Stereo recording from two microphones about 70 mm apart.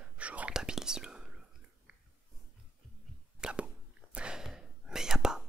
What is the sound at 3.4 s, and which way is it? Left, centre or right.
Whispering, centre.